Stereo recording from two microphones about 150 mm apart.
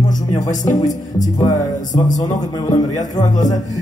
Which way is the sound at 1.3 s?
25° left (ahead or behind).